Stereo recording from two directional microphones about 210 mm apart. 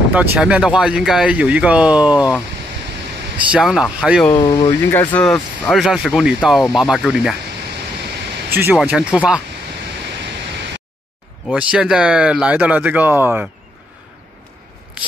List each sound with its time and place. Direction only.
0.1 s speech: 5° right (ahead or behind)
3.5 s speech: centre (ahead or behind)
4.3 s speech: 20° left (ahead or behind)
4.6 s speech: 10° left (ahead or behind)
8.5 s speech: 10° right (ahead or behind)
11.4 s speech: 5° right (ahead or behind)